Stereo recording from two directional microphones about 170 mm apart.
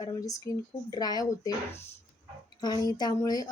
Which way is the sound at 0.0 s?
20° left (ahead or behind).